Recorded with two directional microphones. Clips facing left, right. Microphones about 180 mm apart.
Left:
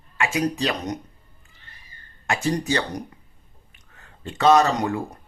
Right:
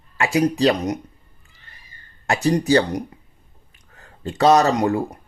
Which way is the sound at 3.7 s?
35° right (ahead or behind).